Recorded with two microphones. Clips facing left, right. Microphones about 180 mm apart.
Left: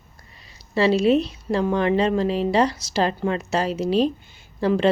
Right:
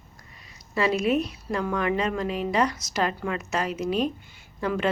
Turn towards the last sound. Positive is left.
turn(degrees=30)  # may be behind; listen again after turning